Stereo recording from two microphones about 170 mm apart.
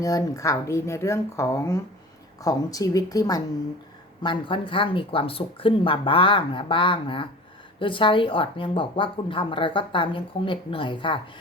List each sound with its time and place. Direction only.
0.0 s a woman's voice: 20° left (ahead or behind)